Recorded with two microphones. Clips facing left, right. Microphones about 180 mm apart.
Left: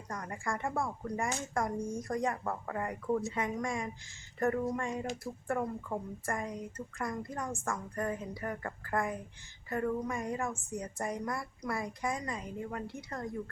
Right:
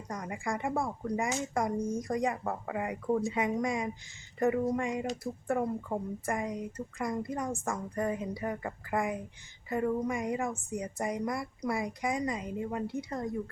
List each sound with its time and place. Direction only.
0.1 s speech: 15° right (ahead or behind)